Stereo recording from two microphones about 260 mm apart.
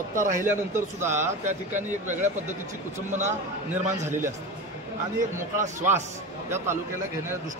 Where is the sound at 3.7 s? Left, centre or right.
Centre.